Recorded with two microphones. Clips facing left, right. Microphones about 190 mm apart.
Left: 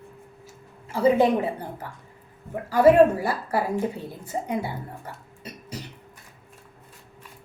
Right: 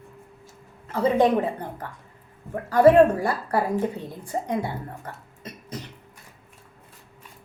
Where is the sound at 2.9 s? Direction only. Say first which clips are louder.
Left 1 dB; 5° left (ahead or behind).